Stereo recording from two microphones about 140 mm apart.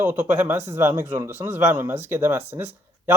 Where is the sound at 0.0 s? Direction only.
15° right (ahead or behind).